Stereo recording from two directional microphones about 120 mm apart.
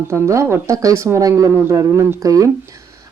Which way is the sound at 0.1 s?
25° right (ahead or behind).